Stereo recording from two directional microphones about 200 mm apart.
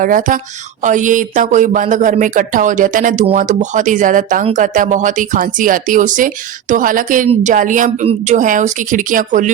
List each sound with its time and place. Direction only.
0.0 s speech: 45° right (ahead or behind)